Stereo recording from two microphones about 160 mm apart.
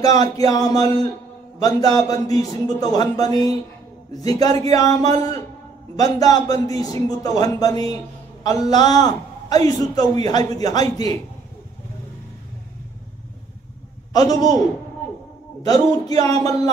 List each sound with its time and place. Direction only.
0.0 s a man's voice: 25° left (ahead or behind)
4.6 s a man's voice: 20° left (ahead or behind)
14.1 s a man's voice: 25° left (ahead or behind)
15.6 s a man's voice: 25° left (ahead or behind)